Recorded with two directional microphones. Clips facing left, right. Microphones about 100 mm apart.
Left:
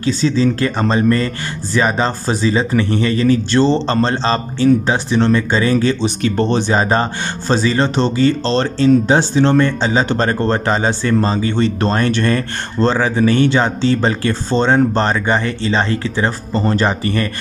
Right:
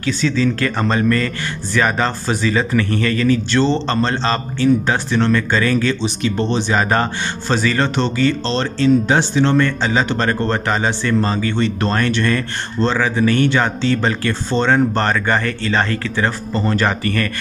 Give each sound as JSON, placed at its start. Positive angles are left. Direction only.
{"t": 0.0, "sound": "speech", "side_deg": 30}
{"t": 6.0, "sound": "speech", "side_deg": 45}
{"t": 6.7, "sound": "speech", "side_deg": 25}